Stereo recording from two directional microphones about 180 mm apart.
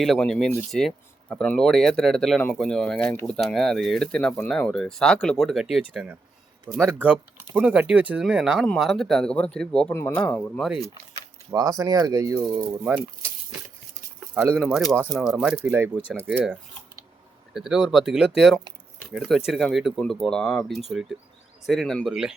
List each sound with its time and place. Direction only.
0.0 s speech: centre (ahead or behind)
11.5 s speech: 20° right (ahead or behind)
14.3 s speech: 10° right (ahead or behind)
14.6 s speech: centre (ahead or behind)